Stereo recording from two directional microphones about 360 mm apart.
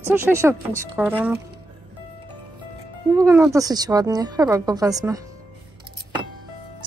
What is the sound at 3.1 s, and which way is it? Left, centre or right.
Speech, centre.